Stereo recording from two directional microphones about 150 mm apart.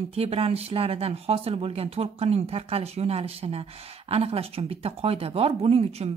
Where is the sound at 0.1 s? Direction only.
40° right (ahead or behind).